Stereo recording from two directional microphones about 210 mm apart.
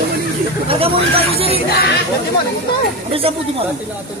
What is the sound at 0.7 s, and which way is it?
Speech, 25° right (ahead or behind).